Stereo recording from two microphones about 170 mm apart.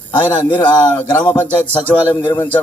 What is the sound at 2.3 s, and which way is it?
Music, 10° left (ahead or behind).